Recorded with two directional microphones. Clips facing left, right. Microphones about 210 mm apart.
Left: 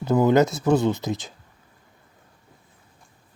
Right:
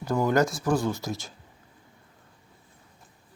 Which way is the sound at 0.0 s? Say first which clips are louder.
Left 6 dB; 20° left (ahead or behind).